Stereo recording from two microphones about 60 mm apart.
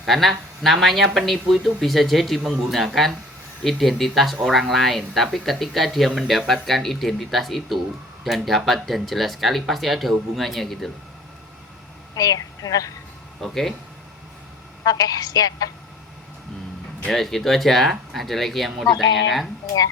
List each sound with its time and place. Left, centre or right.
0.0 s speech: centre
12.1 s a woman's voice: left
13.4 s speech: centre
14.8 s a woman's voice: left
17.1 s speech: centre